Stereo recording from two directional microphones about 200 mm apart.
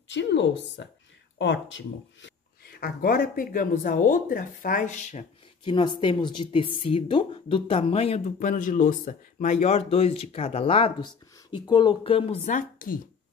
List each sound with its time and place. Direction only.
0.1 s a woman's voice: 60° left (ahead or behind); by 5.2 s 35° left (ahead or behind)
5.6 s speech: 25° left (ahead or behind); by 13.0 s 45° left (ahead or behind)